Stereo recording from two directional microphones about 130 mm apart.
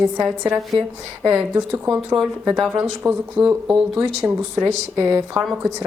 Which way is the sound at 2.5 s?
5° right (ahead or behind).